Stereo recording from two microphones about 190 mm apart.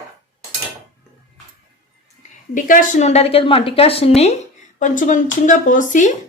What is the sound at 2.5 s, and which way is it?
Speech, 45° left (ahead or behind).